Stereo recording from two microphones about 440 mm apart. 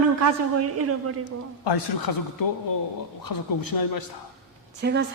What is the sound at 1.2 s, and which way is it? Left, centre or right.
A man's voice, left.